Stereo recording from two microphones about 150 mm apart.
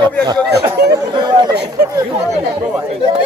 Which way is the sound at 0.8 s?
90° right.